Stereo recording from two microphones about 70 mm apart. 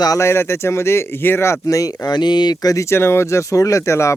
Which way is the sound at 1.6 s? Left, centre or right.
Left.